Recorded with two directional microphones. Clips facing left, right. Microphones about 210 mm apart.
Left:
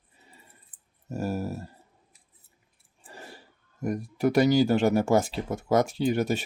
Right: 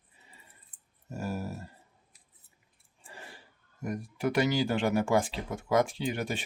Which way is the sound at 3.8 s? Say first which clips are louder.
Left 6 dB; 40° left (ahead or behind).